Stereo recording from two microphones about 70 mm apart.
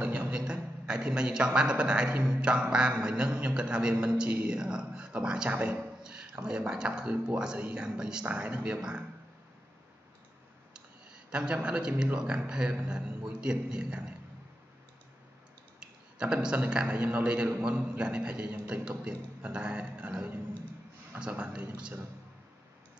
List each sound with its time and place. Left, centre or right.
0.0 s a man's voice: centre
11.3 s a man's voice: centre
15.8 s a man's voice: centre